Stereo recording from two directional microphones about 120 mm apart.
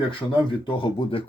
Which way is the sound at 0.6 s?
45° left (ahead or behind).